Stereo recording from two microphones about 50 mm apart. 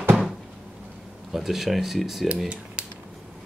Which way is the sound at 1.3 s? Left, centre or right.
Centre.